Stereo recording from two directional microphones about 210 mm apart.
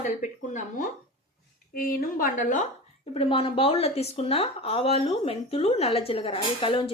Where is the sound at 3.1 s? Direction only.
25° left (ahead or behind).